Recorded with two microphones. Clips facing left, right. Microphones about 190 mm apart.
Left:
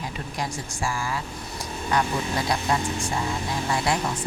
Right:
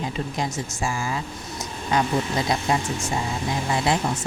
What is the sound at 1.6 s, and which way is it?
Vehicle, 20° right (ahead or behind).